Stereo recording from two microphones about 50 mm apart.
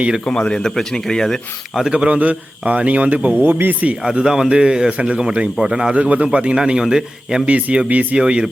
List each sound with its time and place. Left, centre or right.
0.3 s speech: centre
1.9 s a man's voice: right
3.4 s speech: right
4.0 s a man's voice: centre
5.5 s a man's voice: centre
5.9 s a man's voice: right
7.4 s a man's voice: right